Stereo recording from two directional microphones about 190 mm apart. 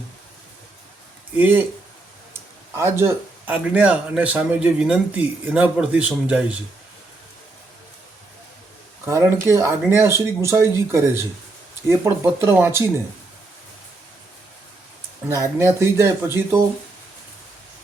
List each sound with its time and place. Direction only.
1.4 s speech: 10° right (ahead or behind)
2.7 s speech: 15° right (ahead or behind)
9.0 s speech: 15° right (ahead or behind)
15.3 s speech: 15° right (ahead or behind)